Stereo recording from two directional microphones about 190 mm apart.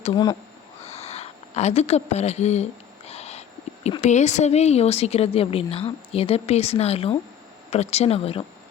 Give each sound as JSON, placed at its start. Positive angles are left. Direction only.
{"t": 0.0, "sound": "speech", "side_deg": 25}
{"t": 0.9, "sound": "a sound", "side_deg": 35}
{"t": 3.8, "sound": "a woman's voice", "side_deg": 35}